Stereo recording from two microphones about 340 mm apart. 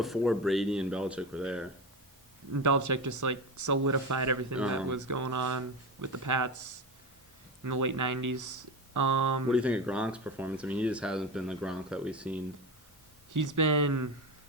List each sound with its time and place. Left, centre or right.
0.0 s speech: centre
2.5 s speech: right
4.5 s speech: centre
4.9 s speech: right
9.5 s speech: centre
13.3 s speech: right